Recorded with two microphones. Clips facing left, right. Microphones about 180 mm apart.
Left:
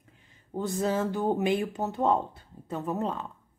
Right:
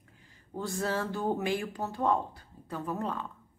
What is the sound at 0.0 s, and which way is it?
Speech, 20° left (ahead or behind).